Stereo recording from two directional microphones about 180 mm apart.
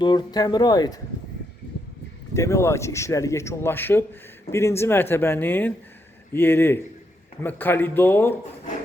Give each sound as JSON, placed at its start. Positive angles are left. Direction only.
{"t": 0.0, "sound": "speech", "side_deg": 25}
{"t": 2.3, "sound": "a man's voice", "side_deg": 15}